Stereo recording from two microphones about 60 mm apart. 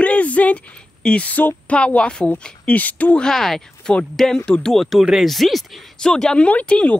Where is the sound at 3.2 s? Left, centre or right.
Centre.